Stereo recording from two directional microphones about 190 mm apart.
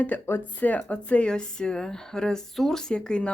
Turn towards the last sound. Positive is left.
turn(degrees=5)  # may be behind; listen again after turning